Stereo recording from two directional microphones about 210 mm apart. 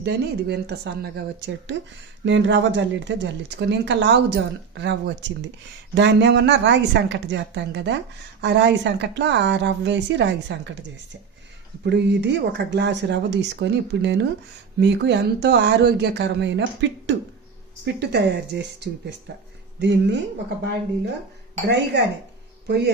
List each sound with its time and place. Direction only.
0.0 s speech: 50° right (ahead or behind)
11.9 s speech: 55° right (ahead or behind)
22.6 s speech: 50° right (ahead or behind)